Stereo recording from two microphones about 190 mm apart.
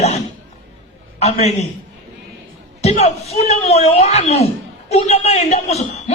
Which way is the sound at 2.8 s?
35° left (ahead or behind).